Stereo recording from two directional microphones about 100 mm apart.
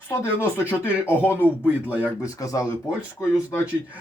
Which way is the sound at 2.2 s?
35° left (ahead or behind).